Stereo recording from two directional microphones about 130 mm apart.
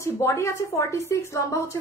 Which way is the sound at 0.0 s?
25° left (ahead or behind).